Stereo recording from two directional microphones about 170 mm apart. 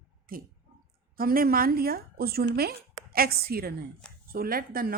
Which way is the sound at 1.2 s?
60° right (ahead or behind).